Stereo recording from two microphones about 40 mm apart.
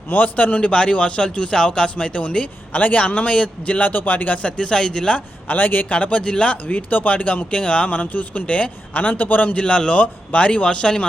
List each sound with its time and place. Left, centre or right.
0.1 s a man's voice: left
0.7 s speech: left
4.4 s speech: left
5.5 s speech: left
5.9 s a man's voice: left
7.5 s speech: left
7.9 s a man's voice: left
9.6 s speech: left